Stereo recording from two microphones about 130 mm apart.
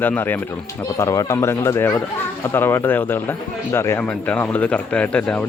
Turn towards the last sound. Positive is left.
turn(degrees=10)  # may be behind; listen again after turning